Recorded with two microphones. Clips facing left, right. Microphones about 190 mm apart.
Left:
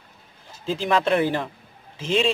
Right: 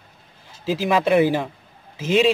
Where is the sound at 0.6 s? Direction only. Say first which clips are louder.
Right 2 dB; 5° right (ahead or behind).